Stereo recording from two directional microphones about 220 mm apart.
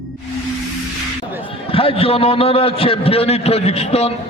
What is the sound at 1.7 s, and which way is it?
A man's voice, 25° left (ahead or behind).